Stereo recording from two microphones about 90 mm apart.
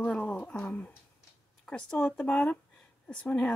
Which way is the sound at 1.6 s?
10° left (ahead or behind).